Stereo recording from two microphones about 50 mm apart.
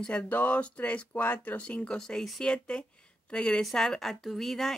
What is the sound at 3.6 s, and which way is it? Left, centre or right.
Speech, centre.